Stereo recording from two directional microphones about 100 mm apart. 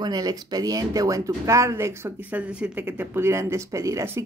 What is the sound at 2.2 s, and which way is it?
Speech, 15° right (ahead or behind).